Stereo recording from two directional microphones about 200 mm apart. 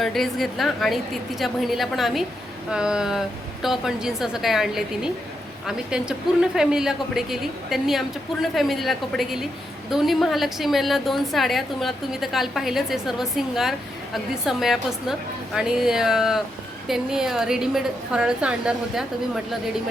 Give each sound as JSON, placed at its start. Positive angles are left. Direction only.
{"t": 0.0, "sound": "a woman's voice", "side_deg": 0}